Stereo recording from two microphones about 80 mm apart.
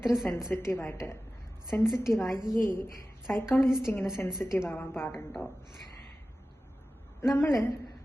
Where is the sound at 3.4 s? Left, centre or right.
Left.